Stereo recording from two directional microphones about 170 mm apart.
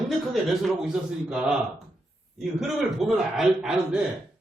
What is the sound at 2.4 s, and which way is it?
A man's voice, centre (ahead or behind).